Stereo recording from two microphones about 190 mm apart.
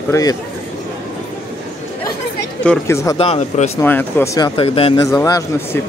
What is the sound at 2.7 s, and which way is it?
Speech, 15° left (ahead or behind).